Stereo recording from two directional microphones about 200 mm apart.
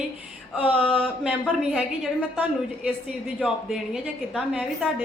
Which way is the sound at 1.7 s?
5° right (ahead or behind).